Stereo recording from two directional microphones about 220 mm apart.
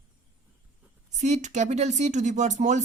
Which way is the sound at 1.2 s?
30° right (ahead or behind).